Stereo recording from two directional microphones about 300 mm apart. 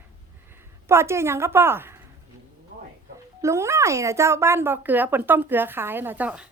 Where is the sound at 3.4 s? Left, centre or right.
Centre.